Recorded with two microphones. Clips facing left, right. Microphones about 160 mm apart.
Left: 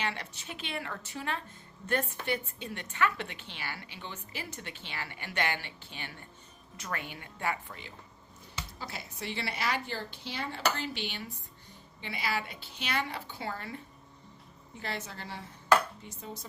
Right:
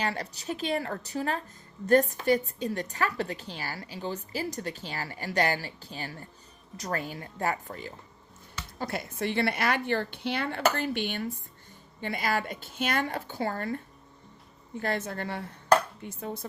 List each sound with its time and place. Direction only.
0.0 s a woman's voice: 40° right (ahead or behind)
8.8 s a woman's voice: 55° right (ahead or behind)